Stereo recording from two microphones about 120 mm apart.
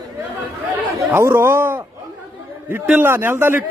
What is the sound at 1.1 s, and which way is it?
A man's voice, 20° right (ahead or behind).